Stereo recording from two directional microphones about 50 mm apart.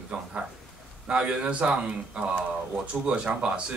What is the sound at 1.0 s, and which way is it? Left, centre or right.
Speech, right.